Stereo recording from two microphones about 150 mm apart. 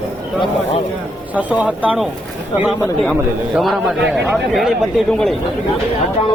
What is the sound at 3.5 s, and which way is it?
A man's voice, centre (ahead or behind).